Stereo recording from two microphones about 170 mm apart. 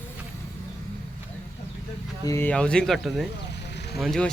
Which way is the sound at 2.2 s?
15° left (ahead or behind).